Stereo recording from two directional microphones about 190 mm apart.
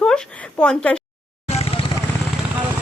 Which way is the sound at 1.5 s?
30° left (ahead or behind).